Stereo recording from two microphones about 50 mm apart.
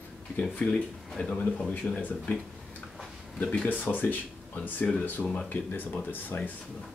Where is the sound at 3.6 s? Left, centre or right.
Left.